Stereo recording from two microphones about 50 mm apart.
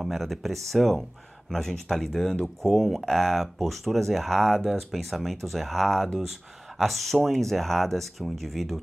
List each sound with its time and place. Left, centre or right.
0.0 s speech: centre